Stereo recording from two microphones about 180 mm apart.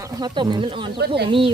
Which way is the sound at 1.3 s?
30° right (ahead or behind).